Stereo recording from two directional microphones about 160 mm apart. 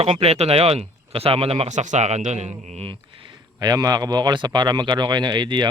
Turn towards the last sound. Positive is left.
turn(degrees=-30)  # may be behind; listen again after turning